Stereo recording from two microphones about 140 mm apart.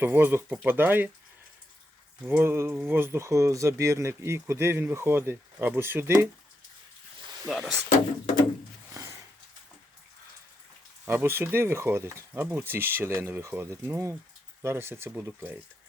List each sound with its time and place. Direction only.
0.0 s speech: 15° right (ahead or behind)
2.2 s speech: 15° right (ahead or behind)
7.4 s speech: centre (ahead or behind)
11.0 s speech: 15° right (ahead or behind)